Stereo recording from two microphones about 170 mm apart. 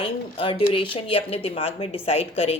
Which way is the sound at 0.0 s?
30° left (ahead or behind).